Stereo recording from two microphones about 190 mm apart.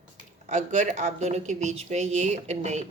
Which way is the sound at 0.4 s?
40° right (ahead or behind).